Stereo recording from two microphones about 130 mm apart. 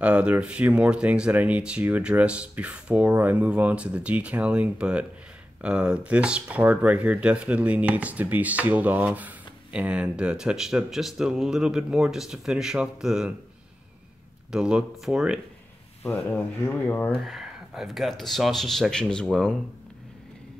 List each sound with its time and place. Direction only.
0.0 s speech: 10° right (ahead or behind)
14.5 s speech: 5° right (ahead or behind)
16.3 s speech: 15° left (ahead or behind)
17.1 s speech: centre (ahead or behind)